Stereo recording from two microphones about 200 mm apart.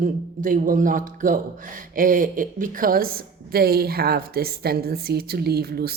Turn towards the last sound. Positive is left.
turn(degrees=-50)  # may be behind; listen again after turning